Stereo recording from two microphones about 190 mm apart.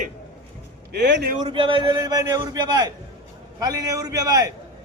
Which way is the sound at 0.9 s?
65° right (ahead or behind).